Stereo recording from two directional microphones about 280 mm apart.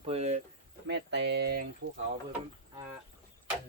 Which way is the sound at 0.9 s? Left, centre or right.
Right.